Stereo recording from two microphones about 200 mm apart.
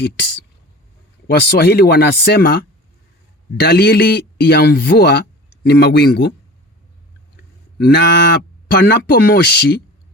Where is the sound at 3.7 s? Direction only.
55° left (ahead or behind).